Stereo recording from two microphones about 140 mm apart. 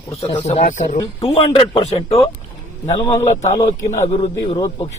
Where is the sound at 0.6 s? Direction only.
60° left (ahead or behind).